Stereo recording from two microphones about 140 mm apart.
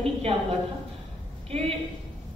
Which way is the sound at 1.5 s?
45° right (ahead or behind).